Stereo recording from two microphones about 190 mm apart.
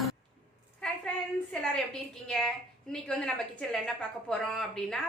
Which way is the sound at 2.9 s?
5° left (ahead or behind).